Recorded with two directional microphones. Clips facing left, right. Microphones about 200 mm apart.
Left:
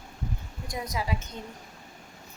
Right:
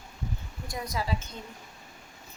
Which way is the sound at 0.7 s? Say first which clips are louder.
Even; 15° left (ahead or behind).